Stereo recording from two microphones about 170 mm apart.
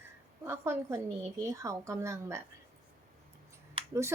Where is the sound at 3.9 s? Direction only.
15° right (ahead or behind).